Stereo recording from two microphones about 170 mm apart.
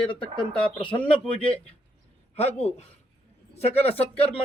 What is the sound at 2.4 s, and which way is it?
Speech, 40° left (ahead or behind).